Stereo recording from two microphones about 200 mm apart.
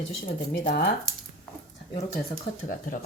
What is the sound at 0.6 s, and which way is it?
Speech, 40° left (ahead or behind).